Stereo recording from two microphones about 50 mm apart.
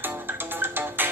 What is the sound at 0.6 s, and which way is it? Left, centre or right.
Music, right.